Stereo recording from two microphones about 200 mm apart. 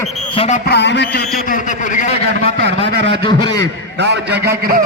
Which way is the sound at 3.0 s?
55° right (ahead or behind).